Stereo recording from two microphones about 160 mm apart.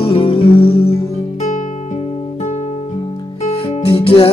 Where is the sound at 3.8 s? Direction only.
35° left (ahead or behind).